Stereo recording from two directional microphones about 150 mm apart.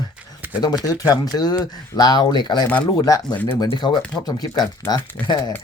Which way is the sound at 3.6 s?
30° left (ahead or behind).